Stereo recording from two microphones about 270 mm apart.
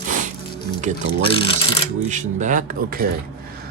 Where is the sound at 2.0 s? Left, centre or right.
Right.